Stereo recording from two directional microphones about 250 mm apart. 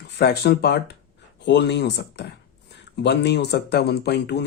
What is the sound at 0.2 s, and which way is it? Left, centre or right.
Speech, left.